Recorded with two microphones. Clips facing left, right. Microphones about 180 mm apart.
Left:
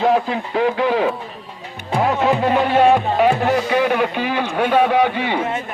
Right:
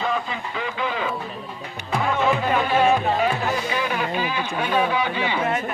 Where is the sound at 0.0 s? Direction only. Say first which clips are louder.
Left 9 dB; 70° left (ahead or behind).